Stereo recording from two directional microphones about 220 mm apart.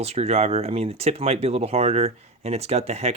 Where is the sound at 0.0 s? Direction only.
30° right (ahead or behind).